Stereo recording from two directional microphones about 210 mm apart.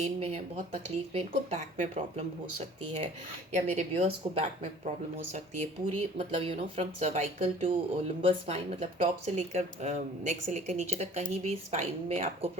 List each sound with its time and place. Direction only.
0.0 s speech: 30° right (ahead or behind)
6.1 s speech: 25° right (ahead or behind)